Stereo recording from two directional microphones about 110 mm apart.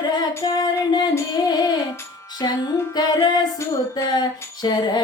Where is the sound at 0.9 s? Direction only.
40° left (ahead or behind).